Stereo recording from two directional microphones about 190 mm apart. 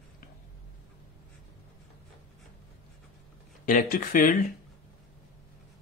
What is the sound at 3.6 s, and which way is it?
Speech, 40° left (ahead or behind).